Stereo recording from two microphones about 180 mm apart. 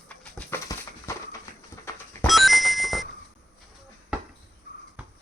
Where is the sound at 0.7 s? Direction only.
20° left (ahead or behind).